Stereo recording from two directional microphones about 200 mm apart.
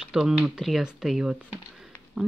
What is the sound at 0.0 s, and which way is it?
Speech, 5° right (ahead or behind).